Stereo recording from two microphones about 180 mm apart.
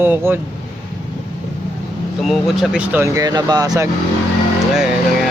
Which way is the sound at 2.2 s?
Centre (ahead or behind).